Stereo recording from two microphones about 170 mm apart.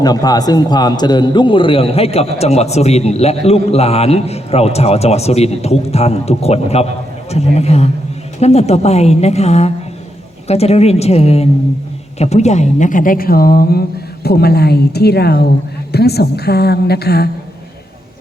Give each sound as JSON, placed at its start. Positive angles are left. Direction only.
{"t": 0.0, "sound": "a man's voice", "side_deg": 20}